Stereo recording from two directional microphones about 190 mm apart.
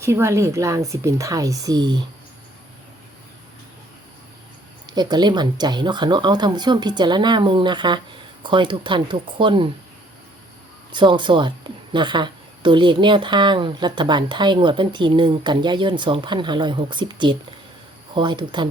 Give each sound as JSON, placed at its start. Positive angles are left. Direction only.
{"t": 0.0, "sound": "speech", "side_deg": -15}
{"t": 4.9, "sound": "a woman's voice", "side_deg": -20}
{"t": 10.9, "sound": "a woman's voice", "side_deg": -25}